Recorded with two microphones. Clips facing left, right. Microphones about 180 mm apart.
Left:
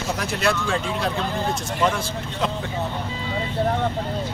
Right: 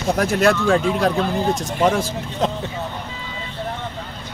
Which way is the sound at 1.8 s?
45° right (ahead or behind).